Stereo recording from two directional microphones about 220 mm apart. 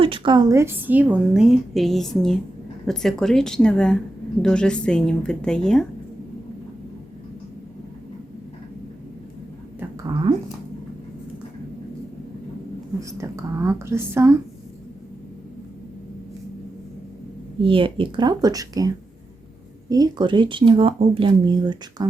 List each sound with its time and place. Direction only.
0.0 s a woman's voice: 20° right (ahead or behind); by 5.8 s 5° left (ahead or behind)
13.0 s a woman's voice: 15° right (ahead or behind)
17.6 s speech: 25° right (ahead or behind)